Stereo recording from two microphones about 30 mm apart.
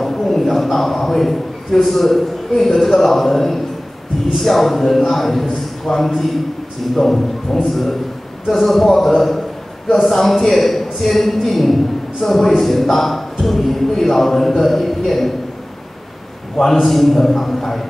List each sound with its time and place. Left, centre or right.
0.0 s a man's voice: centre
16.7 s a man's voice: centre